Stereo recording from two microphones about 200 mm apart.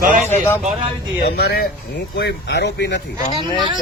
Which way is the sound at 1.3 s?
50° left (ahead or behind).